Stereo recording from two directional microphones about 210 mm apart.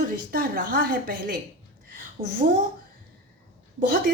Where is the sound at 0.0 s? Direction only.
40° right (ahead or behind).